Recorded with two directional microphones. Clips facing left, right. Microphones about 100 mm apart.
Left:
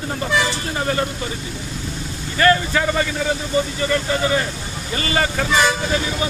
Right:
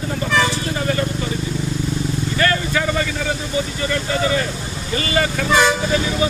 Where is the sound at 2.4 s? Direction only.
30° left (ahead or behind).